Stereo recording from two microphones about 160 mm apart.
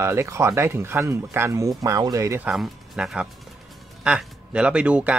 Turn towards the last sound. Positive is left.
turn(degrees=-10)  # may be behind; listen again after turning